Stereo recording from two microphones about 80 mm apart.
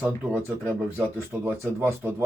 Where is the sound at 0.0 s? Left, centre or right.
Right.